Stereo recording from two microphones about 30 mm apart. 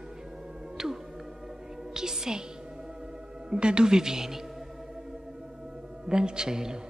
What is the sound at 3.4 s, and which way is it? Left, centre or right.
Speech, right.